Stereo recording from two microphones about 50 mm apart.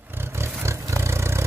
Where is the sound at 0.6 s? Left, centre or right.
Right.